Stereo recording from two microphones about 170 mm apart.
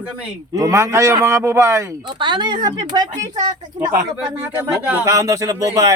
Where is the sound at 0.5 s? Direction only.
20° right (ahead or behind).